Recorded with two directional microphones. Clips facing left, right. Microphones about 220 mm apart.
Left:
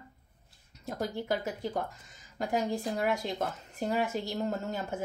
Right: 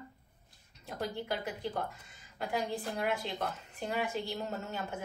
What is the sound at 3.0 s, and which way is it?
Speech, 45° left (ahead or behind).